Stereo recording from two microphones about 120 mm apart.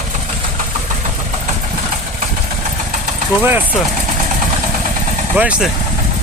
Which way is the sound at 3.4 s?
15° right (ahead or behind).